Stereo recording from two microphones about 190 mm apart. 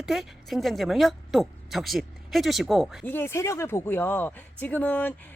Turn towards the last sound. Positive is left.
turn(degrees=10)  # may be behind; listen again after turning